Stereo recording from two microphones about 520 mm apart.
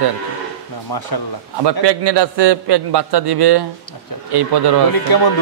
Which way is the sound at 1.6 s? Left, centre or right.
Right.